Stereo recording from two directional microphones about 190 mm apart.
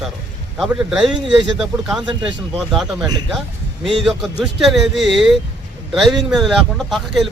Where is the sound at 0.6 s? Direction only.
Centre (ahead or behind).